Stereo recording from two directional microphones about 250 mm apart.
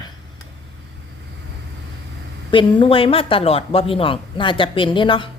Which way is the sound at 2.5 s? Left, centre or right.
Centre.